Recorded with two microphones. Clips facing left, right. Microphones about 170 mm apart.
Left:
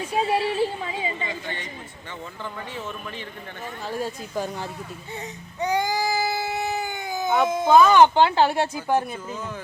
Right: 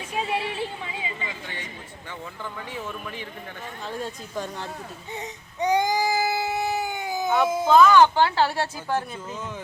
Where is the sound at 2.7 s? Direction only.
10° right (ahead or behind).